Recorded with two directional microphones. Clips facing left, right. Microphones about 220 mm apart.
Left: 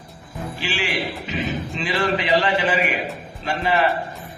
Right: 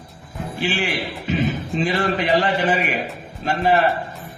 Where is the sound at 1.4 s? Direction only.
50° right (ahead or behind).